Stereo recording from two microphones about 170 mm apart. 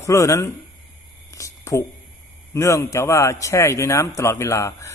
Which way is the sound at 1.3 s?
20° left (ahead or behind).